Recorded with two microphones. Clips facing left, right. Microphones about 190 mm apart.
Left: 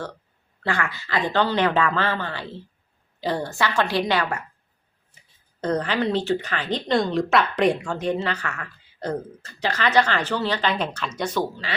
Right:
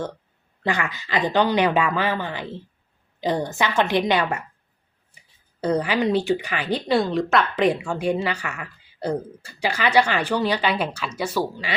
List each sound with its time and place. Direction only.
0.6 s a woman's voice: 15° right (ahead or behind)
5.5 s speech: 10° right (ahead or behind)